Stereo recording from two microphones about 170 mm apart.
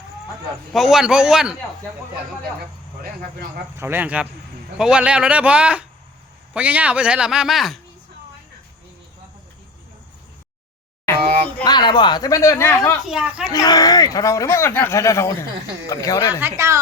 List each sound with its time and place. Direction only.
0.7 s a man's voice: centre (ahead or behind)
3.8 s a man's voice: 15° right (ahead or behind)
11.6 s speech: 25° left (ahead or behind)
13.1 s a man's voice: 5° right (ahead or behind)
13.5 s speech: 20° left (ahead or behind)
16.4 s a man's voice: 15° right (ahead or behind)